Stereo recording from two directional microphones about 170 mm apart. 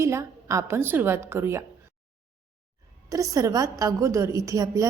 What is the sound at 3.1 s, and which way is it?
A woman's voice, 20° right (ahead or behind).